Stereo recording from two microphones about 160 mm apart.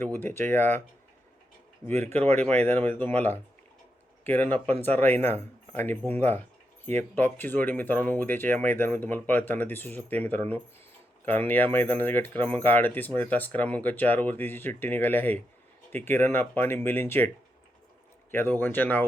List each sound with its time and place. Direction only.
0.0 s speech: 10° left (ahead or behind)
2.1 s speech: 40° right (ahead or behind)
2.6 s speech: 10° left (ahead or behind)